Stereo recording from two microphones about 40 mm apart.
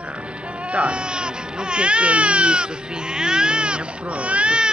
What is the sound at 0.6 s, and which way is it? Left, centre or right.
Speech, right.